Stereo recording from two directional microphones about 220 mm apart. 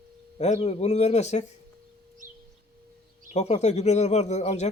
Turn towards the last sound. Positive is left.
turn(degrees=30)  # may be behind; listen again after turning